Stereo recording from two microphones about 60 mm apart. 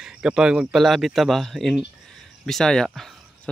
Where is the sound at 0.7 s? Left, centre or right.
Centre.